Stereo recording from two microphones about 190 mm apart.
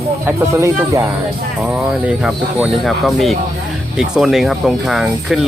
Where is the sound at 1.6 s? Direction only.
5° right (ahead or behind).